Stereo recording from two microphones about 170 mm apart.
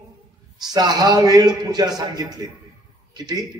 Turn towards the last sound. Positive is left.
turn(degrees=-25)  # may be behind; listen again after turning